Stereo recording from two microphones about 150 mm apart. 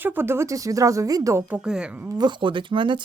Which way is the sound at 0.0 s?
15° right (ahead or behind).